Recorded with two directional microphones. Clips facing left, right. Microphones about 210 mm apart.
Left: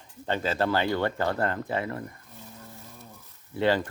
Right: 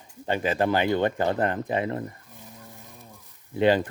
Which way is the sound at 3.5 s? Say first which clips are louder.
Right 4 dB; 15° right (ahead or behind).